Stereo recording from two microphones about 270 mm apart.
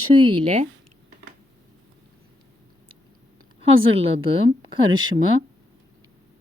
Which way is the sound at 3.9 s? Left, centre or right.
Right.